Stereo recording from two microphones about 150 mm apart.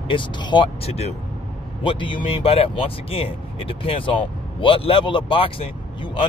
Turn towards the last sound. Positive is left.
turn(degrees=35)  # may be behind; listen again after turning